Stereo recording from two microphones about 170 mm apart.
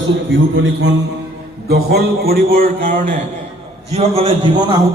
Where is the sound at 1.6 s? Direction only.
65° right (ahead or behind); by 3.2 s 50° right (ahead or behind).